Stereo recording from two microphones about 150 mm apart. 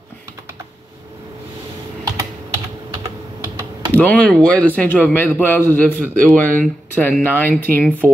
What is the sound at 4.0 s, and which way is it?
A man's voice, 10° left (ahead or behind).